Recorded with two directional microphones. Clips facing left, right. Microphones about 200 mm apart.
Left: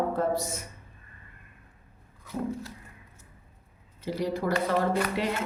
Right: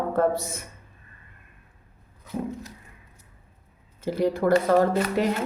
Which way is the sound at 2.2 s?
20° right (ahead or behind).